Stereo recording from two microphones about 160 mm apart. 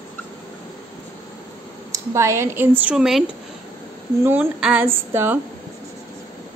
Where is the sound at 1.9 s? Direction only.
20° right (ahead or behind).